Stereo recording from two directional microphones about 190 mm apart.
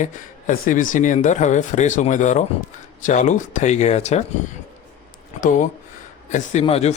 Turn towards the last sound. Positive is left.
turn(degrees=35)  # may be behind; listen again after turning